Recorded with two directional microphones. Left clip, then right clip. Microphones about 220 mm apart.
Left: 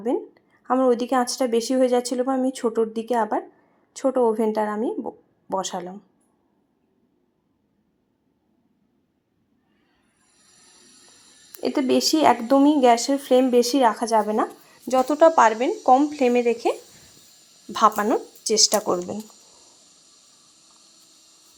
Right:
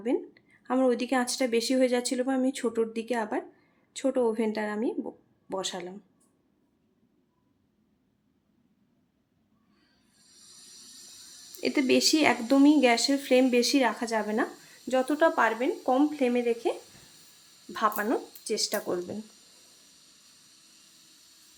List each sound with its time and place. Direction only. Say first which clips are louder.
0.7 s speech: left 6 dB; 10° left (ahead or behind)
11.9 s speech: left 6 dB; 10° left (ahead or behind)